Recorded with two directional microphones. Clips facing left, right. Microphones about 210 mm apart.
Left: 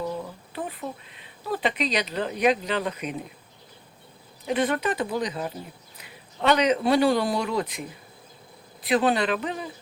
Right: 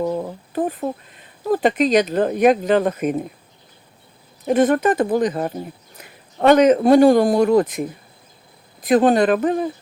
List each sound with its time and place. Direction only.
0.0 s speech: 45° right (ahead or behind)
4.4 s a man's voice: 45° right (ahead or behind)